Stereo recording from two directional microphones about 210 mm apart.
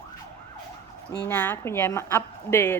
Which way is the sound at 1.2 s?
10° left (ahead or behind).